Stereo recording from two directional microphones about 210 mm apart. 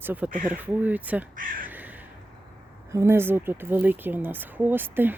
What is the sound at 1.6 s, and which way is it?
Crow, 10° right (ahead or behind).